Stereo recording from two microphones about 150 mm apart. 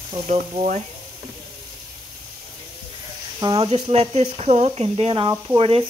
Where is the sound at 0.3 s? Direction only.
50° right (ahead or behind).